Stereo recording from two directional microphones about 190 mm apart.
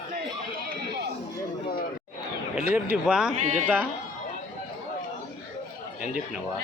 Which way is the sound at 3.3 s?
35° right (ahead or behind).